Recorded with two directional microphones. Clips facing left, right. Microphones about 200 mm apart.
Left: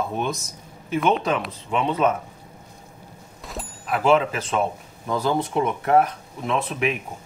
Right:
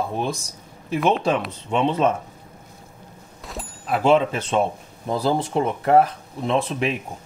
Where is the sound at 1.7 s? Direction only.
25° right (ahead or behind).